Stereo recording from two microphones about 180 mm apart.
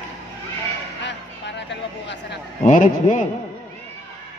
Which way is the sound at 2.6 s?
45° left (ahead or behind).